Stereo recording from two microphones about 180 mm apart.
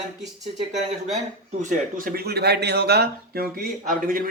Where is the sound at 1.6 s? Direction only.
45° right (ahead or behind).